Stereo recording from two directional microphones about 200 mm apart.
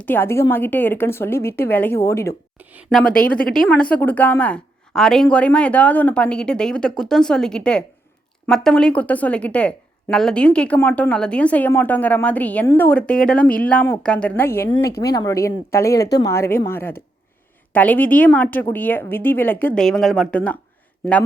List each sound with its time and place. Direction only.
0.0 s a woman's voice: 10° left (ahead or behind)
2.6 s a woman's voice: 10° right (ahead or behind)
3.0 s a woman's voice: 5° left (ahead or behind)